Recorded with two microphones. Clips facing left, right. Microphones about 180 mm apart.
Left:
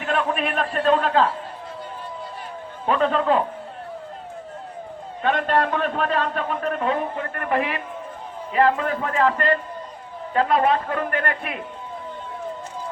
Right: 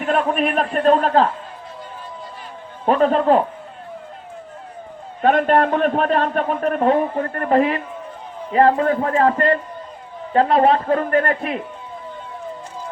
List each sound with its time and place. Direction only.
0.0 s a man's voice: 40° right (ahead or behind)
2.8 s a man's voice: 40° right (ahead or behind)
5.2 s a man's voice: 45° right (ahead or behind)